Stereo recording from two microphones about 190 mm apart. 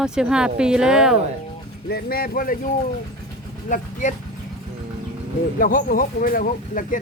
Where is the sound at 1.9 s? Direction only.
50° left (ahead or behind).